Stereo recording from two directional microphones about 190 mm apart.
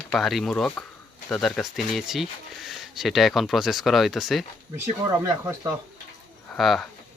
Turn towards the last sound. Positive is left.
turn(degrees=0)  # may be behind; listen again after turning